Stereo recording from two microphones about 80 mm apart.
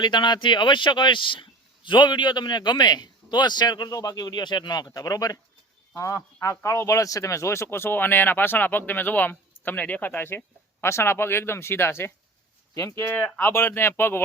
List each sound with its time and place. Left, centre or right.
0.0 s a man's voice: left